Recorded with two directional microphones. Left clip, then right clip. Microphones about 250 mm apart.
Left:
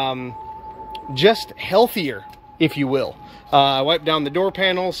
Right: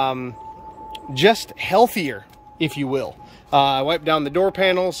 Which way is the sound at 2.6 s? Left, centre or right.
Centre.